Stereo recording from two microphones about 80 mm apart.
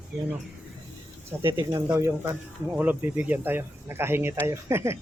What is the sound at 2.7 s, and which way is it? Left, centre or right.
Speech, centre.